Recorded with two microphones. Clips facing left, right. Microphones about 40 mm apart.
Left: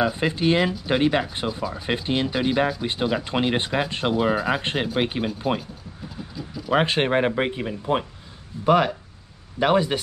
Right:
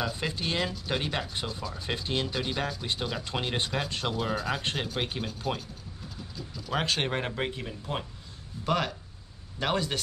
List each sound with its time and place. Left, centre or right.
0.0 s speech: left
6.3 s vehicle: centre
6.7 s speech: left